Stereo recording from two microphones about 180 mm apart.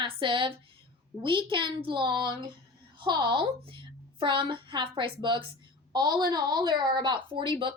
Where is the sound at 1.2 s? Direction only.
25° right (ahead or behind).